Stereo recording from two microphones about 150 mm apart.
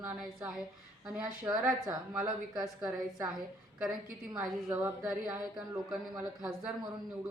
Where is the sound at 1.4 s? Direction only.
20° right (ahead or behind).